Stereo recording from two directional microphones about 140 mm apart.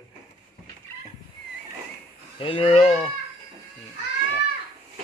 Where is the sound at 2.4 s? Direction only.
40° left (ahead or behind).